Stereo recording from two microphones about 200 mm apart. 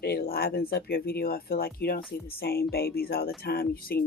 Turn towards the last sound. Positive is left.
turn(degrees=50)  # may be behind; listen again after turning